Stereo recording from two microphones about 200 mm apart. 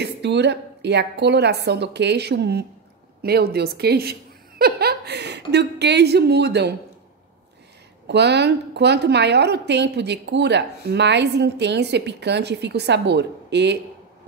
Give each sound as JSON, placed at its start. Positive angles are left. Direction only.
{"t": 0.0, "sound": "a woman's voice", "side_deg": -60}
{"t": 8.1, "sound": "a woman's voice", "side_deg": -60}